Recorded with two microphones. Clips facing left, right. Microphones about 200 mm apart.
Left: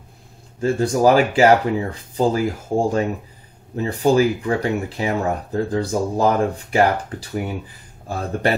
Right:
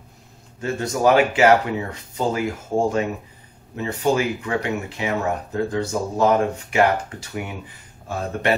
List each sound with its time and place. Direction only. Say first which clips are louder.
0.6 s speech: left 5 dB; 30° left (ahead or behind)